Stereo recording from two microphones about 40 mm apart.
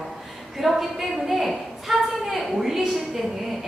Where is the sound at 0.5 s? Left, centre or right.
Centre.